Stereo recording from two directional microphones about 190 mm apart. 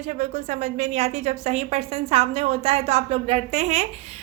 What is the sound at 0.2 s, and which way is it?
A woman's voice, 35° right (ahead or behind).